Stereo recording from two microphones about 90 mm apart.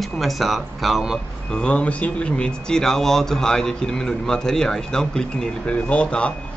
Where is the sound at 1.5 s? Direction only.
10° left (ahead or behind).